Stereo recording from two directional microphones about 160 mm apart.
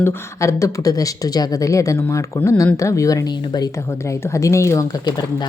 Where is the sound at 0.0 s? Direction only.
15° left (ahead or behind).